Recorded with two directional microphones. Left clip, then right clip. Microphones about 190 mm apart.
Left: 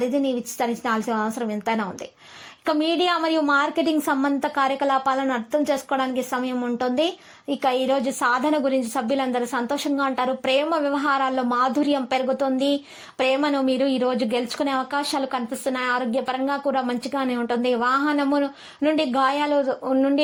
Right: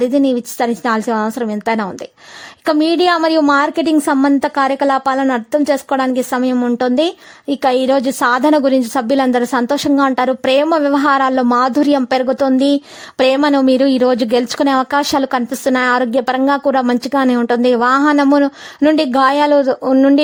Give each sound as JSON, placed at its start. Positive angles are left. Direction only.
{"t": 0.0, "sound": "a woman's voice", "side_deg": -40}